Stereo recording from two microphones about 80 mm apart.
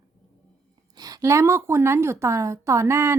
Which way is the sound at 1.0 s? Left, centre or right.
Right.